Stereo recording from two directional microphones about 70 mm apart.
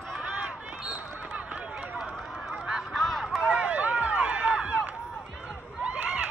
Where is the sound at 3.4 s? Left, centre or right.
Centre.